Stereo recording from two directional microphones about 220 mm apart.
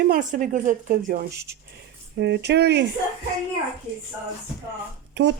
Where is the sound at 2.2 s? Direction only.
50° right (ahead or behind).